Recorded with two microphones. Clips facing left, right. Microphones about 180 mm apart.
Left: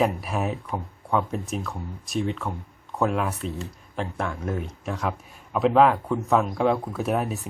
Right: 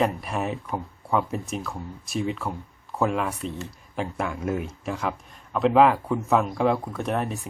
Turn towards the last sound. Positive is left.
turn(degrees=5)  # may be behind; listen again after turning